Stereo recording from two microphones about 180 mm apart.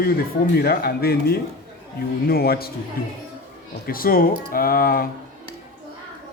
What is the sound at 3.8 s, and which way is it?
Speech, 55° left (ahead or behind).